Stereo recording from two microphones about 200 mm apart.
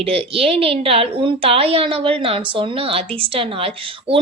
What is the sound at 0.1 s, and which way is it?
A woman's voice, 30° right (ahead or behind).